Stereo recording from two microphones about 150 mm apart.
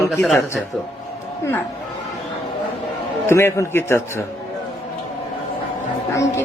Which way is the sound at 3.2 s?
15° left (ahead or behind).